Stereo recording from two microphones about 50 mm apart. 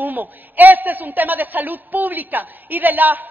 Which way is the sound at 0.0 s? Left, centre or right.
Right.